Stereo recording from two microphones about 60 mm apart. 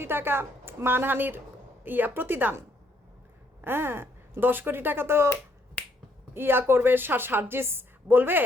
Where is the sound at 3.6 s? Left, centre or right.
Right.